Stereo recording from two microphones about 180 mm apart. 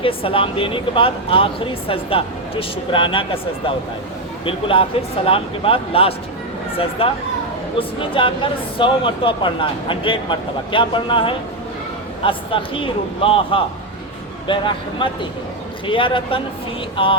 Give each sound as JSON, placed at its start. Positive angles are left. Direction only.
{"t": 0.0, "sound": "speech", "side_deg": 30}
{"t": 4.4, "sound": "speech", "side_deg": 30}